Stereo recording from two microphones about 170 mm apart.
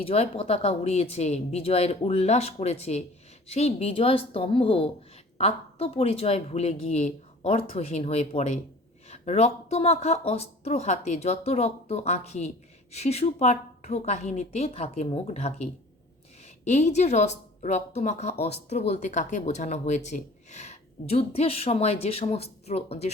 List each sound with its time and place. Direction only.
0.0 s speech: 35° left (ahead or behind)